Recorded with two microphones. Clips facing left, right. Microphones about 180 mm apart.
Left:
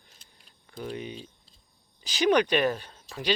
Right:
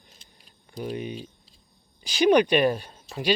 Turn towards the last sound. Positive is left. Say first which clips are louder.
# right 4 dB
turn(degrees=-15)  # may be behind; listen again after turning